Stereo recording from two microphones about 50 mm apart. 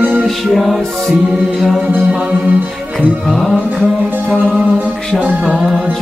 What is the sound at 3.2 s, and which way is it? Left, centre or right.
Mantra, centre.